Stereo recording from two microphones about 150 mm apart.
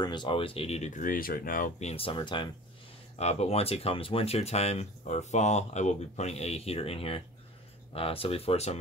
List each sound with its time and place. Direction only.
0.0 s speech: 30° left (ahead or behind); by 1.7 s 70° left (ahead or behind)
1.8 s speech: 40° left (ahead or behind)
3.2 s speech: 45° left (ahead or behind)